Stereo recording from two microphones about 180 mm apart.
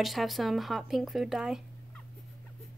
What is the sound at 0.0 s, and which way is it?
Speech, centre (ahead or behind).